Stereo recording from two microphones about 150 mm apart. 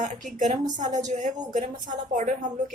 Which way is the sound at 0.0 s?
55° right (ahead or behind).